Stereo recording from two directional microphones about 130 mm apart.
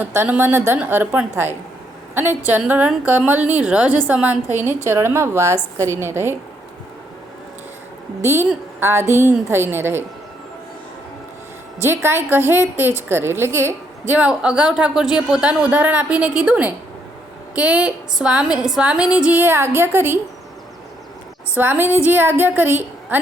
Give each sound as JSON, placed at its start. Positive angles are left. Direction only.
{"t": 0.0, "sound": "a woman's voice", "side_deg": -15}
{"t": 8.2, "sound": "a woman's voice", "side_deg": -20}
{"t": 12.0, "sound": "a woman's voice", "side_deg": -20}
{"t": 14.1, "sound": "a woman's voice", "side_deg": -10}
{"t": 21.5, "sound": "a woman's voice", "side_deg": -15}